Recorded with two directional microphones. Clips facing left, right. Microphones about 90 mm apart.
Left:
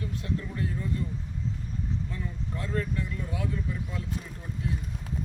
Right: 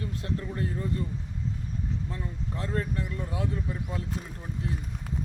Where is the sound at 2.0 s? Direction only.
35° right (ahead or behind).